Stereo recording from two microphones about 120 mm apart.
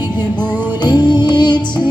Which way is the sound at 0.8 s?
35° left (ahead or behind).